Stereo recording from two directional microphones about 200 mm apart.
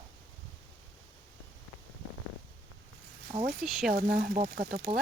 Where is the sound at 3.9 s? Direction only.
45° right (ahead or behind).